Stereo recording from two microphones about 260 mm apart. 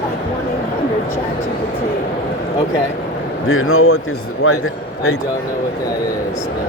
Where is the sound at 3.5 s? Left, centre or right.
Left.